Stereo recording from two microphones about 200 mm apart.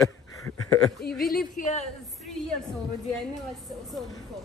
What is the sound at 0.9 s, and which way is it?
Speech, 50° left (ahead or behind).